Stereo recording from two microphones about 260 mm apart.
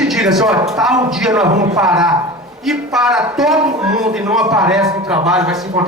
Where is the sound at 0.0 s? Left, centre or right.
Centre.